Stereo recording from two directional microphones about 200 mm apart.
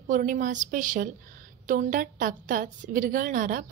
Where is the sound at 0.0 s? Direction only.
45° right (ahead or behind).